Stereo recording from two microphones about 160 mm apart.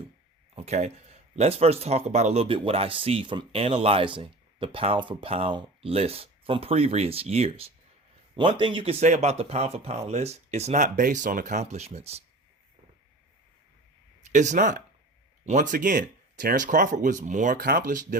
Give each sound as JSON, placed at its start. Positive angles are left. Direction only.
{"t": 0.5, "sound": "speech", "side_deg": -40}
{"t": 14.2, "sound": "speech", "side_deg": -50}